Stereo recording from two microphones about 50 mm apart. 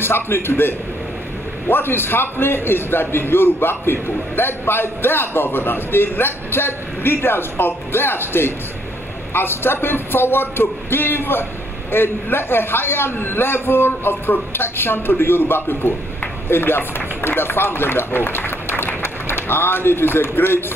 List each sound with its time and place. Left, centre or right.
0.0 s a man's voice: left